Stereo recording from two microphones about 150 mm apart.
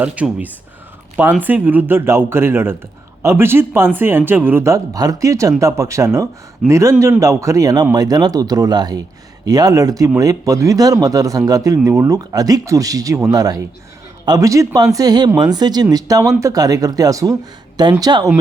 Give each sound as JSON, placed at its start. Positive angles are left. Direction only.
{"t": 0.0, "sound": "a man's voice", "side_deg": -10}